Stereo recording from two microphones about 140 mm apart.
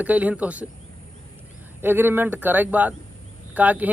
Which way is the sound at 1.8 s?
15° right (ahead or behind).